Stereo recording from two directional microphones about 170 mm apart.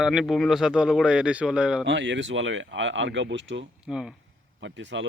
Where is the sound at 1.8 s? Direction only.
90° right.